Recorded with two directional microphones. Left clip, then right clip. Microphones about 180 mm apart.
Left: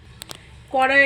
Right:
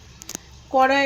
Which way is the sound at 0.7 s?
15° right (ahead or behind).